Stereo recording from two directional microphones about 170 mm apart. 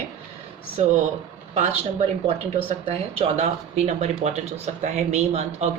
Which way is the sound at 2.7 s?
35° right (ahead or behind).